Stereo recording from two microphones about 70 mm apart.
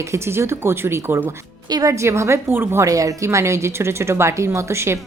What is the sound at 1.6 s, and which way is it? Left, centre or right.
Speech, right.